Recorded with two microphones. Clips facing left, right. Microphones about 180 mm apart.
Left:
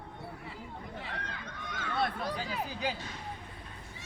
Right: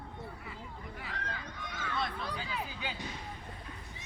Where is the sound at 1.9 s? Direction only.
55° left (ahead or behind).